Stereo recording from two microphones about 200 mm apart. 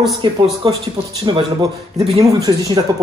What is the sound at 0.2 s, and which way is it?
Speech, 25° right (ahead or behind).